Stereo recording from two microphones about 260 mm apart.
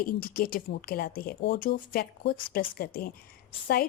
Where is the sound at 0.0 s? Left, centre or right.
Left.